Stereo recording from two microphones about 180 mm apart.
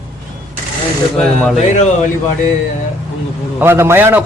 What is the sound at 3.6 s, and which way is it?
Speech, 15° right (ahead or behind).